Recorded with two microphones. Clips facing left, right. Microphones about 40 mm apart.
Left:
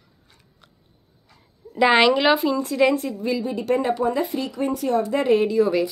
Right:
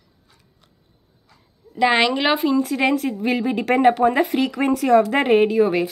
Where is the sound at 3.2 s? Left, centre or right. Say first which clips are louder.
Right 3 dB; right.